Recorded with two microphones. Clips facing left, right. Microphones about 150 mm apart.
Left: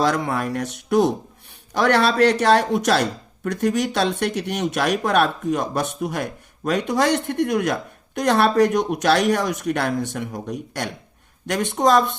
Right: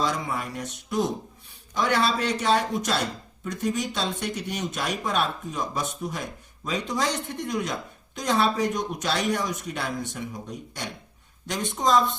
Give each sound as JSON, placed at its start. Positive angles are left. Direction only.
{"t": 0.0, "sound": "speech", "side_deg": 75}